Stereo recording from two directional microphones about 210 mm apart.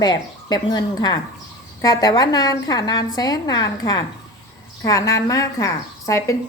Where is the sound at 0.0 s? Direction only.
20° left (ahead or behind).